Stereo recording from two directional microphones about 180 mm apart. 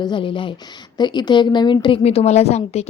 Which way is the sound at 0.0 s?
25° left (ahead or behind).